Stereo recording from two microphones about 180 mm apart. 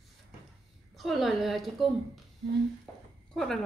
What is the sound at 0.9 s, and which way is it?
A woman's voice, centre (ahead or behind).